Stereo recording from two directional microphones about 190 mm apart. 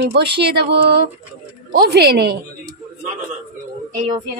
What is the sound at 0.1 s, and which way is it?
Speech, 60° right (ahead or behind).